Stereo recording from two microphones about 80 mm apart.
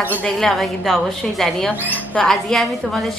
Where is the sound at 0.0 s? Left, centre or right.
Left.